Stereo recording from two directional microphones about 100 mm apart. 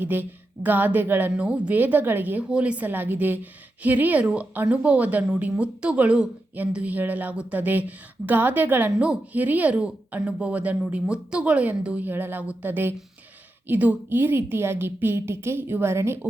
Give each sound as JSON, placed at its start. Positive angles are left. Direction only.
{"t": 0.0, "sound": "a woman's voice", "side_deg": -20}